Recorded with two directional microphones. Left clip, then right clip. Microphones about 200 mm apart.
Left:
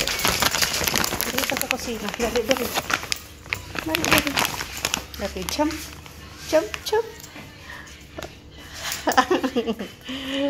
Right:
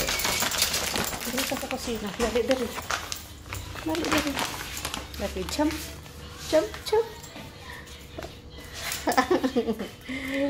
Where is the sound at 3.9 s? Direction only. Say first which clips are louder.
Left 6 dB; 45° left (ahead or behind).